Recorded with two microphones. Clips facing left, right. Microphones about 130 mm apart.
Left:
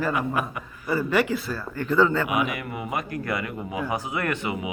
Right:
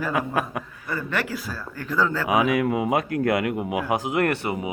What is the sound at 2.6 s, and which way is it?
Speech, 90° right.